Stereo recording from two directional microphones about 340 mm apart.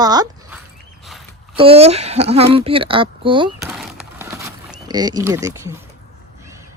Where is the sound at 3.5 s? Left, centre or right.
Centre.